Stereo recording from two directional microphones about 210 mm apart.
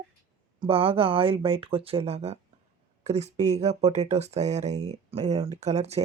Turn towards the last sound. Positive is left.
turn(degrees=-30)  # may be behind; listen again after turning